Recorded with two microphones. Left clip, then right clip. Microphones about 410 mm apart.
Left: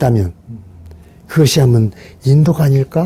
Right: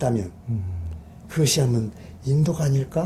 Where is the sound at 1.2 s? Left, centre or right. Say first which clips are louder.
Left 10 dB; left.